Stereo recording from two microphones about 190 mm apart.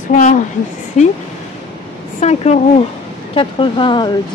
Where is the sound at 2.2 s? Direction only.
35° left (ahead or behind).